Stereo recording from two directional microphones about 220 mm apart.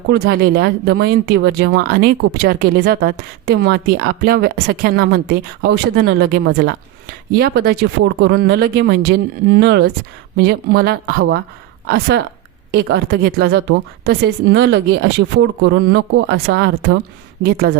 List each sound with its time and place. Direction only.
0.1 s speech: 45° right (ahead or behind)